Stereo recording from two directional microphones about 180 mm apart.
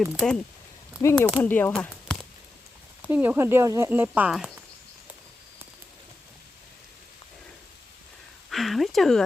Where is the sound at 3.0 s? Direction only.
10° right (ahead or behind).